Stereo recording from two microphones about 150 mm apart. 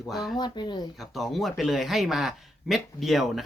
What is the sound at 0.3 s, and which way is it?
Speech, 30° left (ahead or behind).